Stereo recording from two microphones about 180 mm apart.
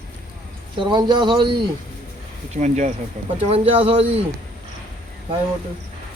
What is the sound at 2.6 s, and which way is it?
Speech, 40° right (ahead or behind).